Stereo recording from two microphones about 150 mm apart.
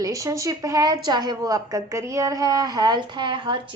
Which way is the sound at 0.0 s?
20° right (ahead or behind).